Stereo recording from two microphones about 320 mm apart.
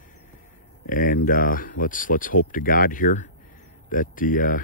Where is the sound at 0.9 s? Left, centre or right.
Left.